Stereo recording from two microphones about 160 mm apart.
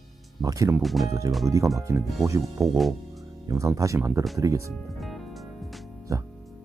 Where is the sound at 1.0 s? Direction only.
20° right (ahead or behind).